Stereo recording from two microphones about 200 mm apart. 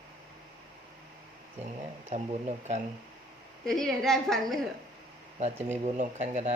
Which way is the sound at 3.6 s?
Centre (ahead or behind).